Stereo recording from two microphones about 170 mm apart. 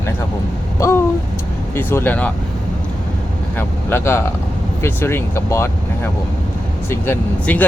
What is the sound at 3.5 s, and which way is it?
Speech, 10° left (ahead or behind).